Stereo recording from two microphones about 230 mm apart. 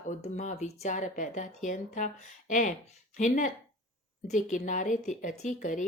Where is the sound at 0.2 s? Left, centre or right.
Left.